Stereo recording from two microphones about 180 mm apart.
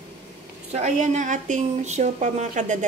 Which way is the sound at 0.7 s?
40° right (ahead or behind).